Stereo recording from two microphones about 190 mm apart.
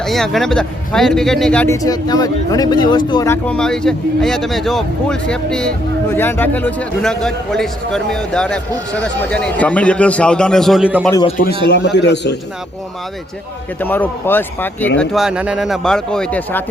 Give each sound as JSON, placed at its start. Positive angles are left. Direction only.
{"t": 0.0, "sound": "speech", "side_deg": 0}
{"t": 3.4, "sound": "speech", "side_deg": 5}
{"t": 11.4, "sound": "a man's voice", "side_deg": 65}
{"t": 13.8, "sound": "speech", "side_deg": 10}
{"t": 14.9, "sound": "speech", "side_deg": 0}